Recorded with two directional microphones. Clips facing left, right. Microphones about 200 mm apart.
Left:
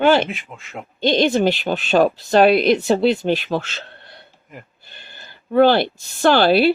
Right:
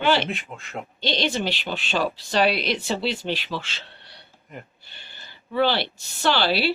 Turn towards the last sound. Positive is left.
turn(degrees=50)  # may be behind; listen again after turning